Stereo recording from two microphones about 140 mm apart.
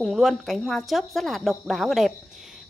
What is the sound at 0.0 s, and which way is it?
A woman's voice, 5° right (ahead or behind).